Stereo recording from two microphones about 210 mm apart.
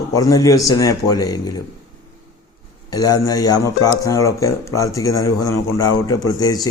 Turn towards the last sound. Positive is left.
turn(degrees=20)  # may be behind; listen again after turning